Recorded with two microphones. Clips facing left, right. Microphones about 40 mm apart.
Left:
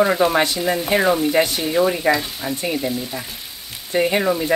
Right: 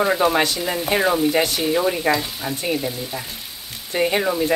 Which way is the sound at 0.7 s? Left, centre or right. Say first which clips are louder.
Left 2 dB; centre.